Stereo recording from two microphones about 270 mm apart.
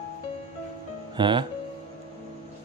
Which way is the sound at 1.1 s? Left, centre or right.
Centre.